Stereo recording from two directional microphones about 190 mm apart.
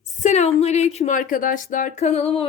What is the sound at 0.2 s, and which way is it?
A woman's voice, 35° left (ahead or behind).